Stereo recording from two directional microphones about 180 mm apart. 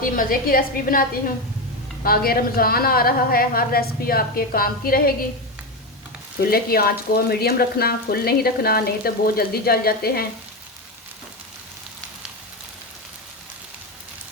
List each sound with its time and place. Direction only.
0.0 s a woman's voice: 50° left (ahead or behind)
2.0 s speech: 55° left (ahead or behind)
6.4 s speech: 60° left (ahead or behind)